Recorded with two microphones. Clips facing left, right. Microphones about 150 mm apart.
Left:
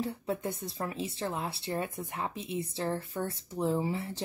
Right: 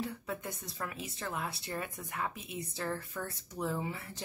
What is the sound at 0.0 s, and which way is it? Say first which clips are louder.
Speech: left 5 dB; 30° left (ahead or behind).